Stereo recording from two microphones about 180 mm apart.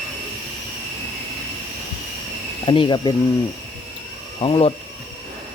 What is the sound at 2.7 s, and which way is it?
Speech, 25° left (ahead or behind).